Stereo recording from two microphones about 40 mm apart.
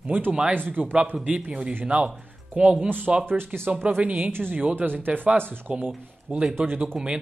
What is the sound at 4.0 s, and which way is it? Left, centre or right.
Speech, right.